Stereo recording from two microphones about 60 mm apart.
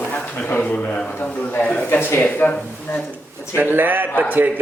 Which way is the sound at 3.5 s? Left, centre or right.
Right.